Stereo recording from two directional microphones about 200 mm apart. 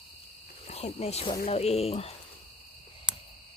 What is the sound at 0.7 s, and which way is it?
Speech, 30° left (ahead or behind).